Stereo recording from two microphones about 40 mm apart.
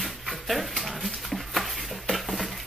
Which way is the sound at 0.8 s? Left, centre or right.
Centre.